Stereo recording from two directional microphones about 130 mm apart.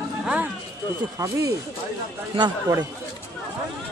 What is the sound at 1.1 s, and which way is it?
A man's voice, 25° right (ahead or behind).